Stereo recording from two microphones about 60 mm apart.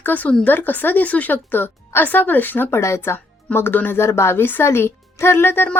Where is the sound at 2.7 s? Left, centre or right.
Left.